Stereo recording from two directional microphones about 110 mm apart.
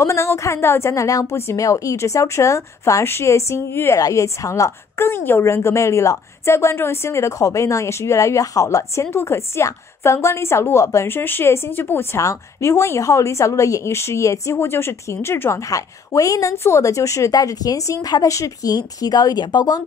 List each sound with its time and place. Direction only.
0.0 s a woman's voice: 25° left (ahead or behind)